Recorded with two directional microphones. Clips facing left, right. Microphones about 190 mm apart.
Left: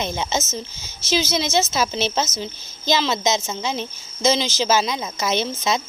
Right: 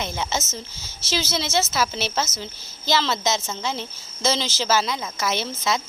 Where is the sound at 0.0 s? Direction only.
20° left (ahead or behind).